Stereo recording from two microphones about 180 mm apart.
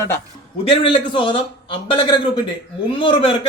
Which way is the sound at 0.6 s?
30° left (ahead or behind).